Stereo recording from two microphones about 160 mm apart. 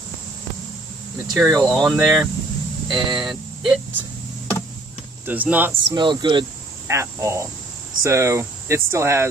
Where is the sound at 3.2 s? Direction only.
5° right (ahead or behind).